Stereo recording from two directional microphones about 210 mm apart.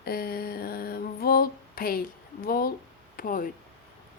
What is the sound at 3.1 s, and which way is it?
Speech, 40° left (ahead or behind).